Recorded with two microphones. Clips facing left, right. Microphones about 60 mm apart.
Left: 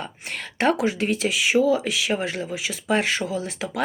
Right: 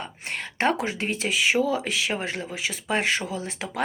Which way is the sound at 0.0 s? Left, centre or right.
Right.